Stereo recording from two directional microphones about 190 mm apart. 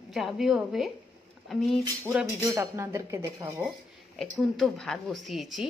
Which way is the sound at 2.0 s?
15° right (ahead or behind).